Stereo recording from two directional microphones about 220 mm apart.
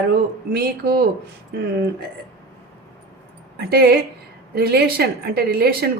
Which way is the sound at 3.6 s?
45° right (ahead or behind).